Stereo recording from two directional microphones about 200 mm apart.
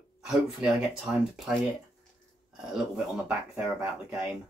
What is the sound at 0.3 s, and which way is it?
Speech, centre (ahead or behind).